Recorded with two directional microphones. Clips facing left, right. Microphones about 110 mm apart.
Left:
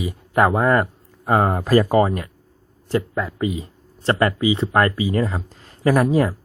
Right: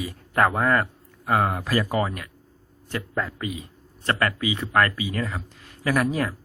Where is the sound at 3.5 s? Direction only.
30° left (ahead or behind).